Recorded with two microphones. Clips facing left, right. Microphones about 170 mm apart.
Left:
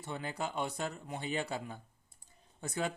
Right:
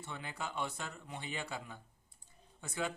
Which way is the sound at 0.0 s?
40° left (ahead or behind).